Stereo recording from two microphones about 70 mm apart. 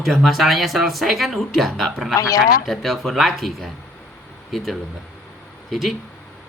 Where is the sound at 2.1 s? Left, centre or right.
Left.